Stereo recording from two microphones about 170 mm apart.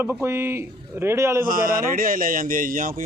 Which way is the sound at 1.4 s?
55° right (ahead or behind).